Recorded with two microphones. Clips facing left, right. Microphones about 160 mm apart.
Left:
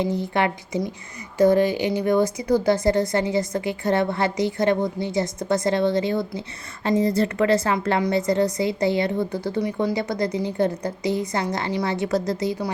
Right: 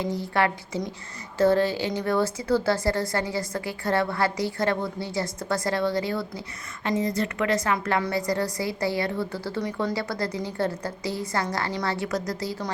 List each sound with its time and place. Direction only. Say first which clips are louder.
0.2 s a woman's voice: left 2 dB; 20° left (ahead or behind)
6.8 s a woman's voice: left 5 dB; 30° left (ahead or behind)